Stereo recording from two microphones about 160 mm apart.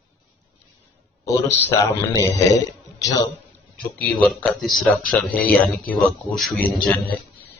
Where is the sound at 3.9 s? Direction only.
5° left (ahead or behind).